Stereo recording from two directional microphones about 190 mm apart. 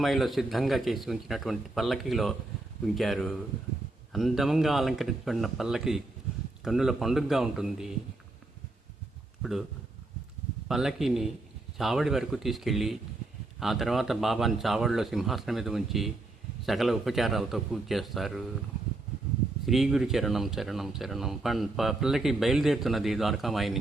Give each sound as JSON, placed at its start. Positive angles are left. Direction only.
{"t": 0.0, "sound": "speech", "side_deg": 0}
{"t": 9.4, "sound": "speech", "side_deg": 0}
{"t": 10.7, "sound": "speech", "side_deg": 0}
{"t": 19.6, "sound": "speech", "side_deg": 0}